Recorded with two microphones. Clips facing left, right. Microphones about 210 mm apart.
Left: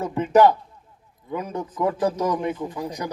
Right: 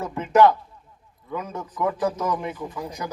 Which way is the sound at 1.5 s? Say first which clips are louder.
Left 2 dB; 35° left (ahead or behind).